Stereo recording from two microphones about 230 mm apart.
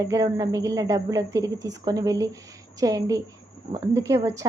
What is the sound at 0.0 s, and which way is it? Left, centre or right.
A woman's voice, centre.